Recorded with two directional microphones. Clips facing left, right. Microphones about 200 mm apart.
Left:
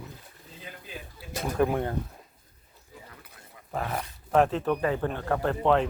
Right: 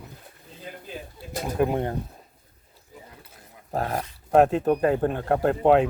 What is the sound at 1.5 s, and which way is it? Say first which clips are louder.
Speech: right 2 dB; 20° right (ahead or behind).